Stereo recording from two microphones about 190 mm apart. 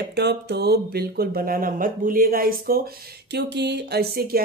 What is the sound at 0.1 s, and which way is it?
Speech, 60° right (ahead or behind).